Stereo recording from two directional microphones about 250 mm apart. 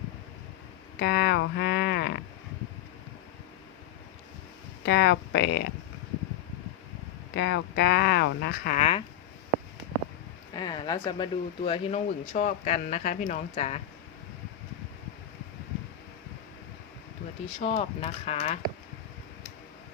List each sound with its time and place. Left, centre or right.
0.9 s speech: left
4.9 s speech: left
7.3 s speech: left
10.5 s speech: centre
17.6 s speech: left